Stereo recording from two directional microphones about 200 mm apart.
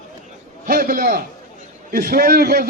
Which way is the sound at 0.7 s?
45° right (ahead or behind).